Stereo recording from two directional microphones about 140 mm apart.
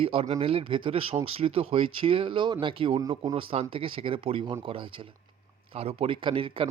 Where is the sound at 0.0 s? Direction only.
45° right (ahead or behind).